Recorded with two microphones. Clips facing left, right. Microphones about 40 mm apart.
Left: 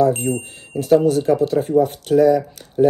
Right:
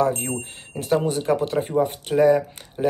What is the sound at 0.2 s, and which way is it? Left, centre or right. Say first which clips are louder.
Speech: left 6 dB; right.